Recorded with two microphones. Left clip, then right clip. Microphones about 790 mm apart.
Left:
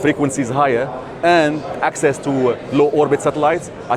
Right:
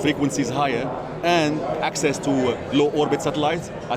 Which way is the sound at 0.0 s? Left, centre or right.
Left.